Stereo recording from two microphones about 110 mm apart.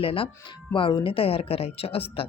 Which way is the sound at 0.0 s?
60° left (ahead or behind).